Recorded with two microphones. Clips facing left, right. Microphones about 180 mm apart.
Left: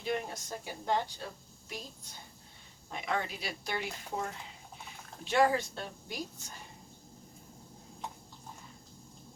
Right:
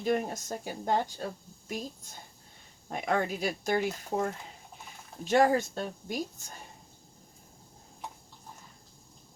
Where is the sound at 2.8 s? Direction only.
50° right (ahead or behind).